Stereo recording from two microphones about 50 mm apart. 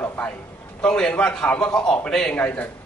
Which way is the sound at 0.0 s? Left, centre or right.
Left.